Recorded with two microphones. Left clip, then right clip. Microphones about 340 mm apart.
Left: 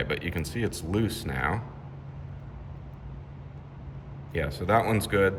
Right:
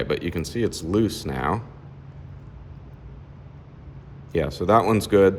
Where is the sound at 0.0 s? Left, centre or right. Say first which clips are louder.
Right 5 dB; centre.